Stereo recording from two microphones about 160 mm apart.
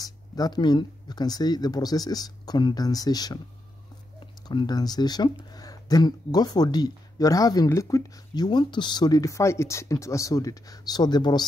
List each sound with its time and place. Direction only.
0.0 s speech: 25° left (ahead or behind)
4.5 s speech: 25° left (ahead or behind)